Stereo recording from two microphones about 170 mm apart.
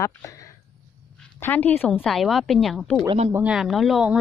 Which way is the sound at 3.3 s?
15° right (ahead or behind).